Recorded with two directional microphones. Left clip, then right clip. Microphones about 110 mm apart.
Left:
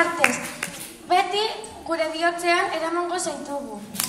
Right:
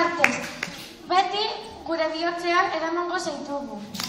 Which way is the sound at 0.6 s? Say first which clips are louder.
Left 1 dB; 70° left (ahead or behind).